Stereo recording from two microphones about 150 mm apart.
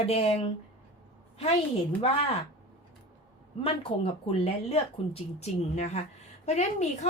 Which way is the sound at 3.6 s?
40° left (ahead or behind).